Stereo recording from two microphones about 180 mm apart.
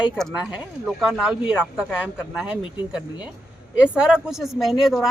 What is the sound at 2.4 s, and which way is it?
Speech, 5° right (ahead or behind).